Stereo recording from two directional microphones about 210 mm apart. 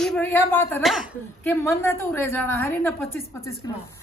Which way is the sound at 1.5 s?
10° left (ahead or behind).